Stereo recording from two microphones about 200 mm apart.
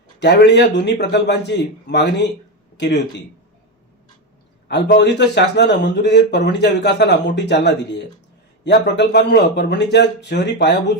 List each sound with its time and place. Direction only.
0.2 s a man's voice: 60° left (ahead or behind)
4.9 s a man's voice: 60° left (ahead or behind)